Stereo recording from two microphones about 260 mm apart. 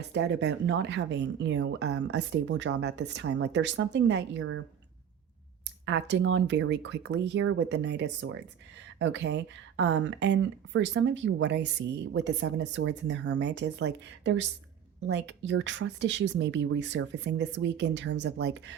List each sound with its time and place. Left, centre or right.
0.1 s speech: right
5.8 s speech: right